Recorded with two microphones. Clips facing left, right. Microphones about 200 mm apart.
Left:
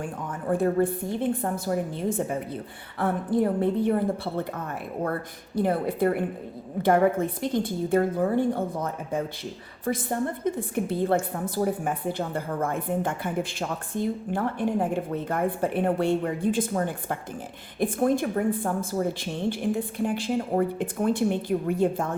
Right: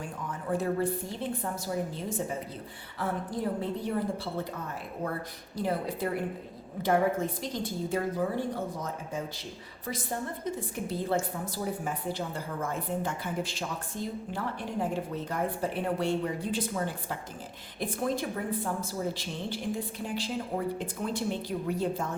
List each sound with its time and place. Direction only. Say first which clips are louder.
0.0 s a woman's voice: left 5 dB; 50° left (ahead or behind)
5.5 s a woman's voice: left 7 dB; 55° left (ahead or behind)